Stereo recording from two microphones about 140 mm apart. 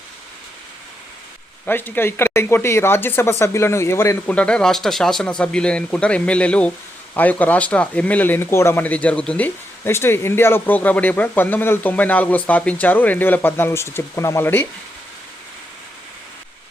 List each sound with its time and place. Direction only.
1.6 s speech: 15° left (ahead or behind)
4.4 s speech: 5° left (ahead or behind)
9.8 s speech: 15° left (ahead or behind)